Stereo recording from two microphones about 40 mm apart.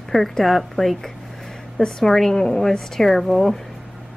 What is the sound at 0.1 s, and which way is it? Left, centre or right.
A woman's voice, centre.